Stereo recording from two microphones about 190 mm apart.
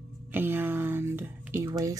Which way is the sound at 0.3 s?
10° right (ahead or behind).